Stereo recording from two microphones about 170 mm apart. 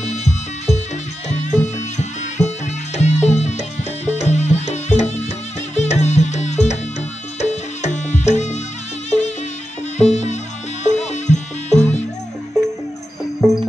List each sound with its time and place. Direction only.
0.0 s music: 45° left (ahead or behind)
9.1 s music: centre (ahead or behind)
9.9 s music: 45° left (ahead or behind)